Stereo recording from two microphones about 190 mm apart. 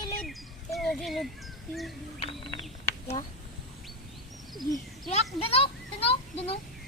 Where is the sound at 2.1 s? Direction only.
25° left (ahead or behind).